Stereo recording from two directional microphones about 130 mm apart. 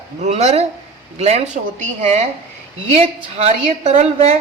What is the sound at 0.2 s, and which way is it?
A woman's voice, 60° right (ahead or behind).